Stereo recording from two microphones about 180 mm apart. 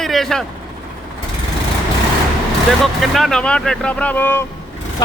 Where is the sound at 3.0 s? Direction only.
Centre (ahead or behind).